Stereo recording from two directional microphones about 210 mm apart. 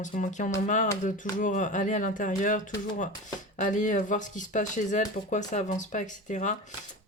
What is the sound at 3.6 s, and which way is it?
Speech, 35° left (ahead or behind).